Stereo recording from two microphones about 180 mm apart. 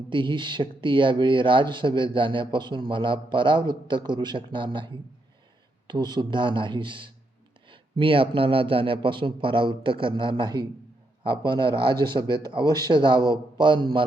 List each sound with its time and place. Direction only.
0.1 s speech: 25° right (ahead or behind)